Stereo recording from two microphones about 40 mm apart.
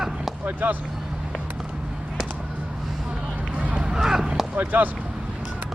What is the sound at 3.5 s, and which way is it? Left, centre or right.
Run, right.